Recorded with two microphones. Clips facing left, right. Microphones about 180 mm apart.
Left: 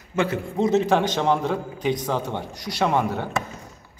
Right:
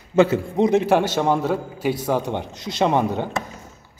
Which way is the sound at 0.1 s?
25° right (ahead or behind).